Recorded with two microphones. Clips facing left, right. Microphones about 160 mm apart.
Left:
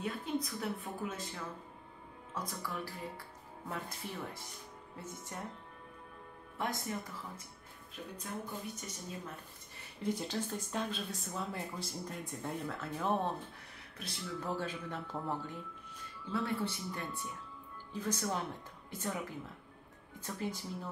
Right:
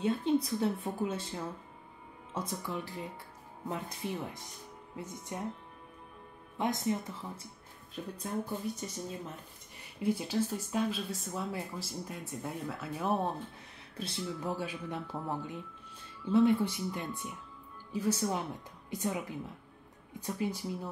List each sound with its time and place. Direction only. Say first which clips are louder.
0.0 s a woman's voice: right 8 dB; 25° right (ahead or behind)
6.6 s a woman's voice: right 6 dB; 20° right (ahead or behind)
8.3 s speech: right 7 dB; 35° right (ahead or behind)
10.0 s a woman's voice: right 5 dB; 10° right (ahead or behind)